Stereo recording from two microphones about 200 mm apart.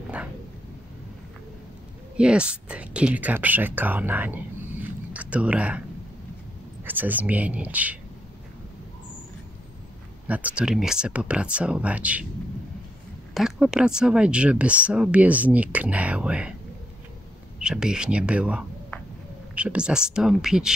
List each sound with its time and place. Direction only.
2.1 s speech: 5° right (ahead or behind)
4.8 s a sound: 5° right (ahead or behind)
6.8 s speech: 10° right (ahead or behind)
10.2 s speech: 5° right (ahead or behind)
13.3 s speech: 5° right (ahead or behind)
17.6 s speech: 5° right (ahead or behind)